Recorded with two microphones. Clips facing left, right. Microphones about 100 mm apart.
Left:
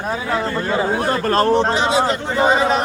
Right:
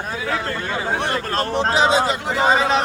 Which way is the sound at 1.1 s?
40° left (ahead or behind).